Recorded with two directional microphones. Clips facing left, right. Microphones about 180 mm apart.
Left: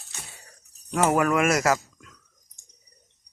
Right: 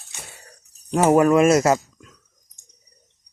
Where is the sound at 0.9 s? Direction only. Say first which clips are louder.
Right 6 dB; 25° right (ahead or behind).